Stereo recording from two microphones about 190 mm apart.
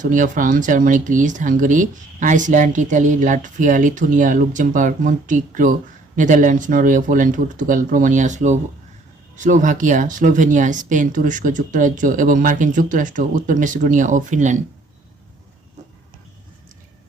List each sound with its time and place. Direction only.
0.0 s speech: 45° right (ahead or behind)